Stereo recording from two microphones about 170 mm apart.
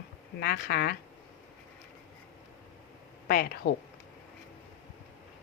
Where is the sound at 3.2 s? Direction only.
60° left (ahead or behind).